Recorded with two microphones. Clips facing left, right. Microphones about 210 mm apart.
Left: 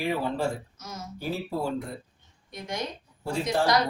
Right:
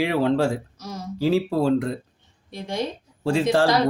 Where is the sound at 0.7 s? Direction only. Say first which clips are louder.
Right 6 dB; 35° right (ahead or behind).